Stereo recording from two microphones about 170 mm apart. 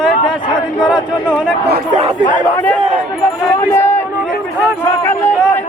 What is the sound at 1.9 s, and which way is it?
Speech, 40° right (ahead or behind).